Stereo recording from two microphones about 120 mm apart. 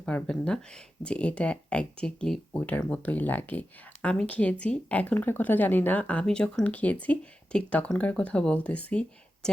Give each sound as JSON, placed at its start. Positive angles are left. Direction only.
{"t": 0.0, "sound": "speech", "side_deg": 10}